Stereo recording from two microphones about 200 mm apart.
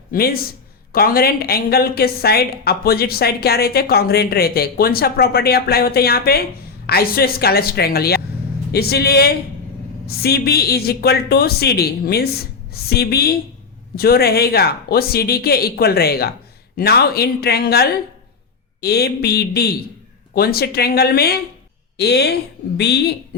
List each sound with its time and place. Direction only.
0.1 s a woman's voice: 50° left (ahead or behind)